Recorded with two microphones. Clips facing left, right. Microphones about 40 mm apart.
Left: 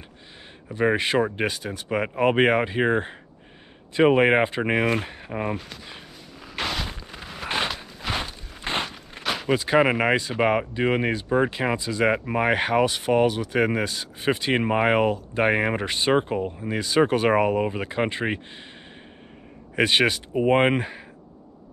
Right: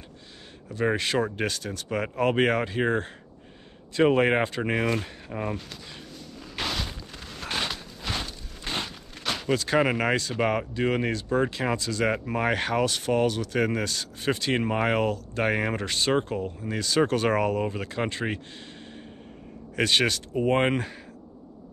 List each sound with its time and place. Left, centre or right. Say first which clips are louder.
0.7 s speech: left 4 dB; left
6.5 s a sound: left 3 dB; centre; by 9.2 s left
9.2 s speech: left 3 dB; centre
19.7 s speech: left 3 dB; centre